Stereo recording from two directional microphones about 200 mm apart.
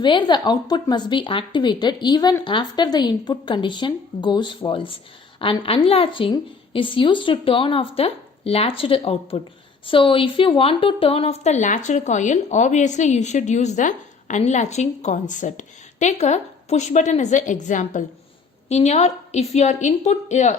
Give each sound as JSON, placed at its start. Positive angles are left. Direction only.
{"t": 0.0, "sound": "a woman's voice", "side_deg": 25}